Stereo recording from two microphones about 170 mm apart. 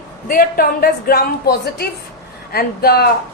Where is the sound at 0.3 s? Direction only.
60° left (ahead or behind).